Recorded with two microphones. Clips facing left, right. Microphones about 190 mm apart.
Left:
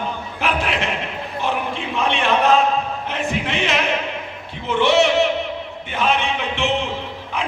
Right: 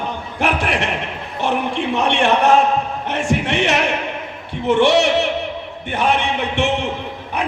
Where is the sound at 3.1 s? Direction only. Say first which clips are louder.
Right 5 dB; 70° right (ahead or behind).